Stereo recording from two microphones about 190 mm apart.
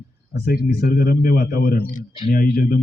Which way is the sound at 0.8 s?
50° left (ahead or behind).